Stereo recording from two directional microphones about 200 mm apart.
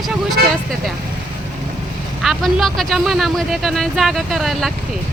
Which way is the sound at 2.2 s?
Centre (ahead or behind).